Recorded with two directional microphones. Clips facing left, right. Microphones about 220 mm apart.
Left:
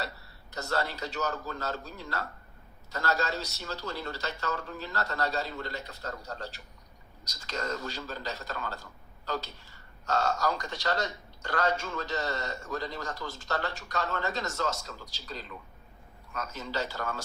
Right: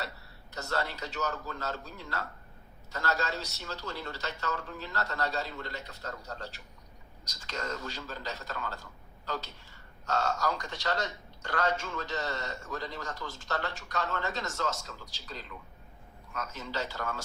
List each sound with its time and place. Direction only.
0.5 s a man's voice: 40° left (ahead or behind)